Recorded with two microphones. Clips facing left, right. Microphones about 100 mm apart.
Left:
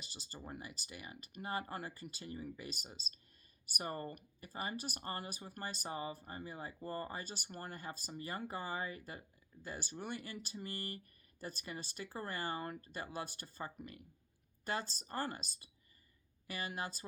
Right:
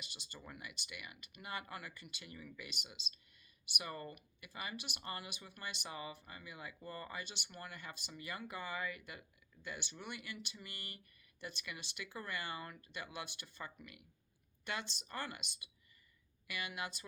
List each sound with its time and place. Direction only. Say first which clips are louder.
0.0 s speech: left 3 dB; 35° left (ahead or behind)